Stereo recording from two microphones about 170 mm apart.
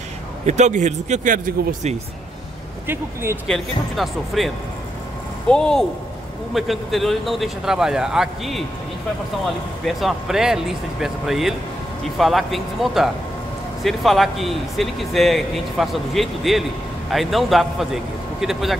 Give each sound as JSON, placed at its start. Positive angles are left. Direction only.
{"t": 0.5, "sound": "speech", "side_deg": -45}
{"t": 2.9, "sound": "speech", "side_deg": -15}
{"t": 3.4, "sound": "speech", "side_deg": 0}
{"t": 5.5, "sound": "speech", "side_deg": 5}
{"t": 9.8, "sound": "speech", "side_deg": 0}